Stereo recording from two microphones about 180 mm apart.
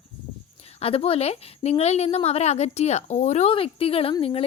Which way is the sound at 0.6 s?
35° left (ahead or behind).